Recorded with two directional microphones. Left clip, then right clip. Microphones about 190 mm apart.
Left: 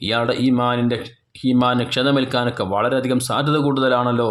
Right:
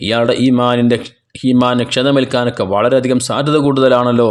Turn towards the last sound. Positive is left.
turn(degrees=-30)  # may be behind; listen again after turning